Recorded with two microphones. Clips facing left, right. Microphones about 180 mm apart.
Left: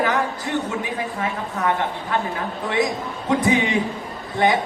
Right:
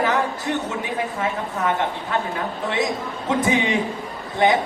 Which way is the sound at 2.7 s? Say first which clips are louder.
Left 4 dB; 20° right (ahead or behind).